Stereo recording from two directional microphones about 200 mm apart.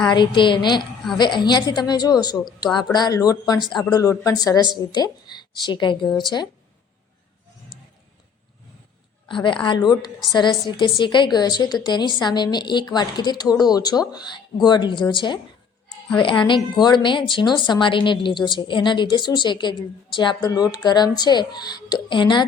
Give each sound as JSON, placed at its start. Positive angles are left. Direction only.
{"t": 0.1, "sound": "a woman's voice", "side_deg": 25}
{"t": 3.7, "sound": "speech", "side_deg": 0}
{"t": 3.9, "sound": "a woman's voice", "side_deg": 15}
{"t": 9.3, "sound": "a woman's voice", "side_deg": 25}